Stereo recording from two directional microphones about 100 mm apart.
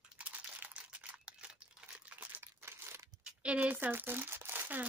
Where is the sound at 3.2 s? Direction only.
15° right (ahead or behind).